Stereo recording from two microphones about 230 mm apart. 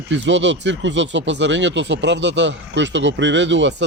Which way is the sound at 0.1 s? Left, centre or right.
Right.